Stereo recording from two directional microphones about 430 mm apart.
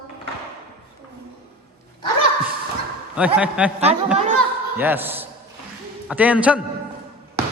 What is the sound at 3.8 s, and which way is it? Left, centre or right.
A man's voice, centre.